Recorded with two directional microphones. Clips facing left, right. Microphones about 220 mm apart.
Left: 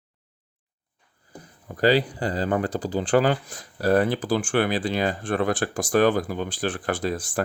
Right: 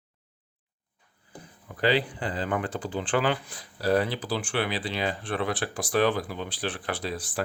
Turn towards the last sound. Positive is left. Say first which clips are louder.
# left 6 dB
turn(degrees=45)  # may be behind; listen again after turning